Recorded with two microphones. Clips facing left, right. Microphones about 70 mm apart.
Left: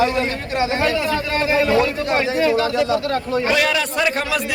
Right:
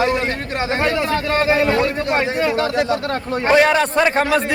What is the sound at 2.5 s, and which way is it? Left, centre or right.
Speech, right.